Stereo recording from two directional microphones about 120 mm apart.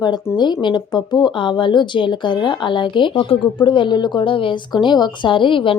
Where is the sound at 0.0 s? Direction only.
35° left (ahead or behind).